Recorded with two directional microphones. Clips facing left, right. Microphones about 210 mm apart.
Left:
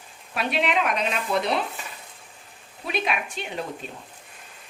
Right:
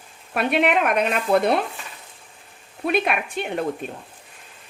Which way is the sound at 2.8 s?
55° right (ahead or behind).